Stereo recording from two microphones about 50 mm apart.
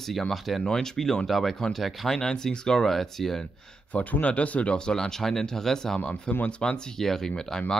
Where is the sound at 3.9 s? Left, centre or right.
Left; by 6.0 s centre.